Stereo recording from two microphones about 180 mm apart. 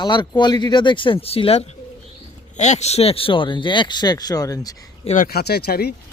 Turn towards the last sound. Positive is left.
turn(degrees=60)  # may be behind; listen again after turning